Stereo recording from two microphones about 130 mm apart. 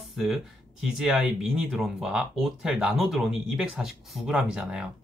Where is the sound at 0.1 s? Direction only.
Centre (ahead or behind).